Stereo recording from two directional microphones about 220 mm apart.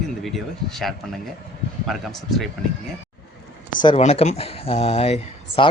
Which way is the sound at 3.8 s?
30° left (ahead or behind).